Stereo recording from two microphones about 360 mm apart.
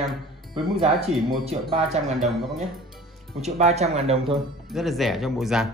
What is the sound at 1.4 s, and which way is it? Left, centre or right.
Speech, centre.